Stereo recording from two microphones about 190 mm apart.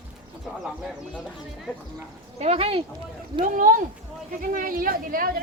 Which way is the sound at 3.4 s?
45° right (ahead or behind).